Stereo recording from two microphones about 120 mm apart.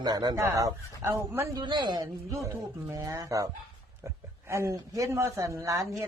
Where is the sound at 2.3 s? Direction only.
25° right (ahead or behind).